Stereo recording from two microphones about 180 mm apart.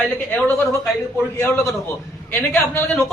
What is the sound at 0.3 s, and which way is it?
Speech, 10° left (ahead or behind).